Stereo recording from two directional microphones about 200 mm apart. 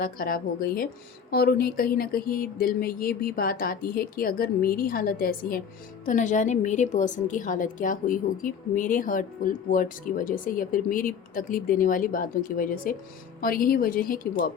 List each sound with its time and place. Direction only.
0.0 s a woman's voice: 45° left (ahead or behind)